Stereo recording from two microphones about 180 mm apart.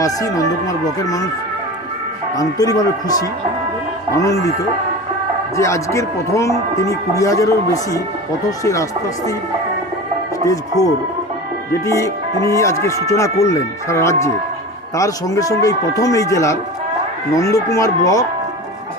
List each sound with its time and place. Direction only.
0.0 s speech: 20° left (ahead or behind)
2.3 s speech: 20° left (ahead or behind)
5.5 s speech: 15° left (ahead or behind)
10.4 s speech: 20° left (ahead or behind)